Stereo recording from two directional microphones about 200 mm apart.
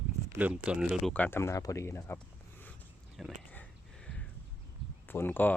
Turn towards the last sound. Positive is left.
turn(degrees=10)  # may be behind; listen again after turning